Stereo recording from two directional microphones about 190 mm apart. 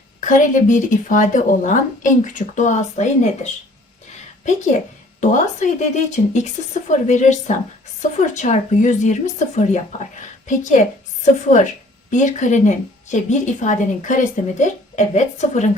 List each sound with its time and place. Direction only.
0.2 s speech: 40° left (ahead or behind)